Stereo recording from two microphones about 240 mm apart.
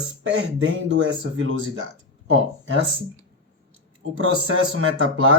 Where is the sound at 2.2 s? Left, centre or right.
Right.